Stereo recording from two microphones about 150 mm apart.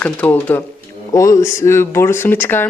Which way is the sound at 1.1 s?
20° left (ahead or behind).